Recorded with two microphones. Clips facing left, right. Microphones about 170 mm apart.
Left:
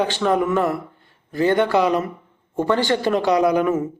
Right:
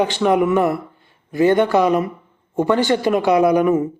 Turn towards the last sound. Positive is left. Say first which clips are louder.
# right 3 dB
turn(degrees=-15)  # may be behind; listen again after turning